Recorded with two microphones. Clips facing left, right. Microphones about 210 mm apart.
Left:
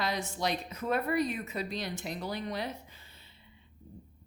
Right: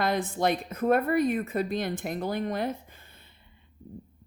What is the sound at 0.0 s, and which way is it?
A woman's voice, 55° right (ahead or behind).